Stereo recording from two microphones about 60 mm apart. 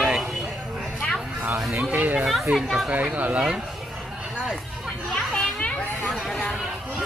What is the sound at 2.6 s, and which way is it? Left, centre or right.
Speech, centre.